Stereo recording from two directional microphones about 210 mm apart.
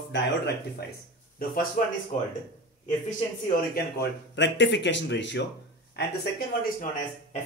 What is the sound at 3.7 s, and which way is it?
Speech, 55° left (ahead or behind).